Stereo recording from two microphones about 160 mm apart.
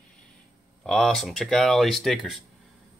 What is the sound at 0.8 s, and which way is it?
Speech, centre (ahead or behind).